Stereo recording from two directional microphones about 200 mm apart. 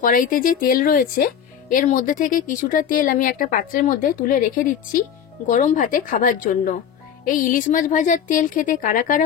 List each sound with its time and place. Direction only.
0.0 s a woman's voice: 45° left (ahead or behind)